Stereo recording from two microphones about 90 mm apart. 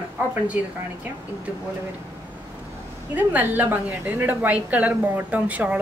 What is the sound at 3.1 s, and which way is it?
A woman's voice, 20° right (ahead or behind).